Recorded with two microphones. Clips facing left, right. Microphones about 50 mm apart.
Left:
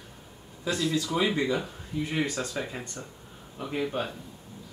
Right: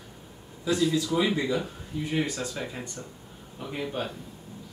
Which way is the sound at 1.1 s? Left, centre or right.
Centre.